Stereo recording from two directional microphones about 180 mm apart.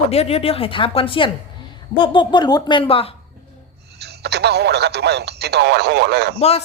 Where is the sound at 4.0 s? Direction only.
65° right (ahead or behind).